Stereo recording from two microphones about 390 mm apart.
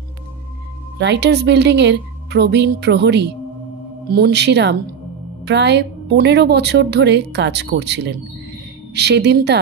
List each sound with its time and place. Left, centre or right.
0.9 s a woman's voice: right